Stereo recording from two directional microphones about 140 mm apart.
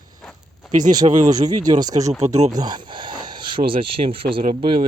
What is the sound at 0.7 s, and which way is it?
Speech, 65° right (ahead or behind).